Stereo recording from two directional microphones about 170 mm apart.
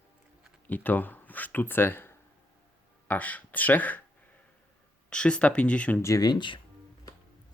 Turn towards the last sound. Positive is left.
turn(degrees=25)  # may be behind; listen again after turning